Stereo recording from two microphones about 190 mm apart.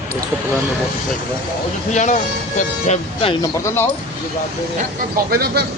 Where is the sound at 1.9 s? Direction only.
40° left (ahead or behind).